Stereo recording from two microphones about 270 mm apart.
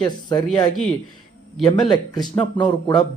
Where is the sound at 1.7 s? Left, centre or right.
Centre.